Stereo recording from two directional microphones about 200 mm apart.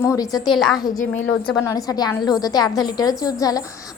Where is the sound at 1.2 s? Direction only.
55° left (ahead or behind).